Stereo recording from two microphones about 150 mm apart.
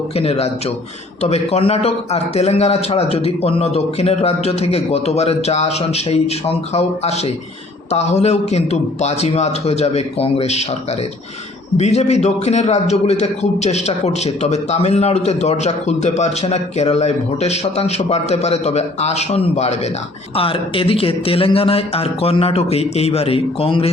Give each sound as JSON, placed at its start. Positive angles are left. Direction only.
{"t": 0.2, "sound": "a man's voice", "side_deg": 45}
{"t": 11.8, "sound": "a man's voice", "side_deg": 45}